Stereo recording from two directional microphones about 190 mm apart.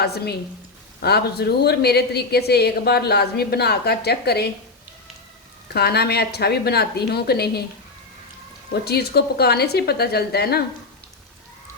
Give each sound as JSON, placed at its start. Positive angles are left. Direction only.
{"t": 0.0, "sound": "a woman's voice", "side_deg": 55}
{"t": 5.6, "sound": "a woman's voice", "side_deg": 55}
{"t": 8.7, "sound": "a woman's voice", "side_deg": 55}